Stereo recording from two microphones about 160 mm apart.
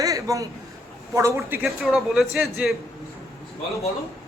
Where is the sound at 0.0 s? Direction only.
20° right (ahead or behind).